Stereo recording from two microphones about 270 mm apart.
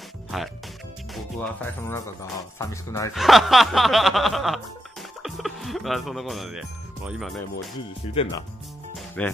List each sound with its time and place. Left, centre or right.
0.3 s music: centre
2.6 s speech: centre
3.2 s music: centre
5.2 s speech: centre
7.1 s music: centre
8.1 s speech: centre
8.9 s music: centre